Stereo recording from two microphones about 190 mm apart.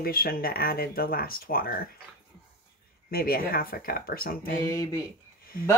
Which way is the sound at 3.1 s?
50° left (ahead or behind).